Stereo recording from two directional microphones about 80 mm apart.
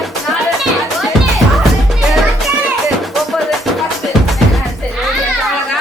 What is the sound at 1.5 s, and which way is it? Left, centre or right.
Music, centre.